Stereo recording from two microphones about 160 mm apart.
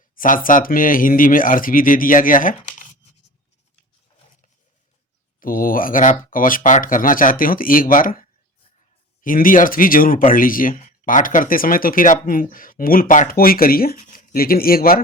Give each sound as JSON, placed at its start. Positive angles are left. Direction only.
{"t": 0.2, "sound": "speech", "side_deg": 60}
{"t": 5.4, "sound": "speech", "side_deg": 60}